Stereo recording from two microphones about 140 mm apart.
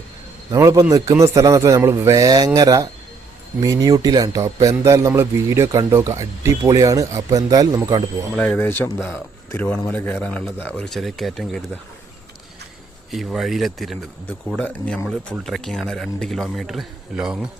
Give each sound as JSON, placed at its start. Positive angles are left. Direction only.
{"t": 0.5, "sound": "speech", "side_deg": -25}
{"t": 8.4, "sound": "speech", "side_deg": 10}
{"t": 13.1, "sound": "speech", "side_deg": 0}